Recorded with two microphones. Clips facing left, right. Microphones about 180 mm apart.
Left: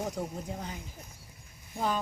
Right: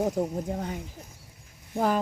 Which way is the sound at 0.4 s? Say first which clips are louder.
Right 7 dB; 55° right (ahead or behind).